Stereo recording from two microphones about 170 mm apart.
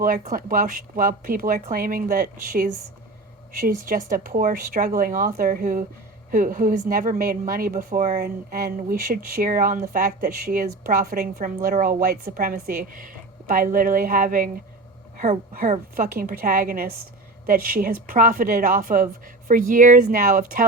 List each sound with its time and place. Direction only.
0.0 s a woman's voice: 55° right (ahead or behind)